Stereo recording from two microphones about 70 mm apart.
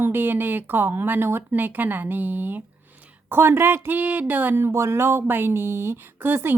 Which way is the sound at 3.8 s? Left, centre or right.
Right.